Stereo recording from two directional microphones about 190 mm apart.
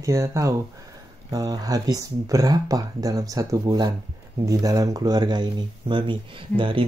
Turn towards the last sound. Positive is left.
turn(degrees=-25)  # may be behind; listen again after turning